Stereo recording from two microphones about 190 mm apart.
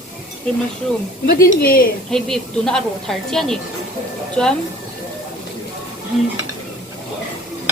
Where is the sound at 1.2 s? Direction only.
50° left (ahead or behind).